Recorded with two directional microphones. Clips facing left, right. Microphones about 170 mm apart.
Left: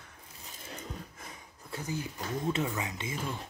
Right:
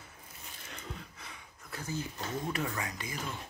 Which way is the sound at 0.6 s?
35° left (ahead or behind).